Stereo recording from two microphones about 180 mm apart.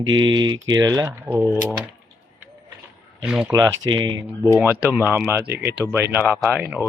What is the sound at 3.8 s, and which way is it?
Speech, 90° right.